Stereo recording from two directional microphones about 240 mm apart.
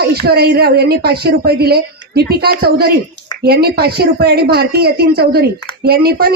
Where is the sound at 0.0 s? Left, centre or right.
Right.